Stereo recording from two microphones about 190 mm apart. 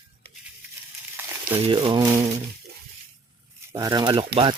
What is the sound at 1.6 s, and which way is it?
Speech, 25° right (ahead or behind).